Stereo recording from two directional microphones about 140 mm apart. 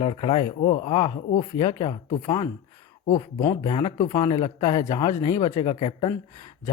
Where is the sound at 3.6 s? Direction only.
35° left (ahead or behind).